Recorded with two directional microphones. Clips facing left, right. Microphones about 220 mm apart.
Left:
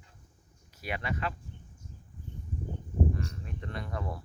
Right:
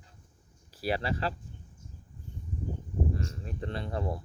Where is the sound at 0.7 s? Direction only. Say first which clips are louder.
Right 5 dB; 35° right (ahead or behind).